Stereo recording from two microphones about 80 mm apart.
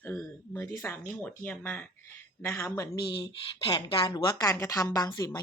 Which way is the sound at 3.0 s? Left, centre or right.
Left.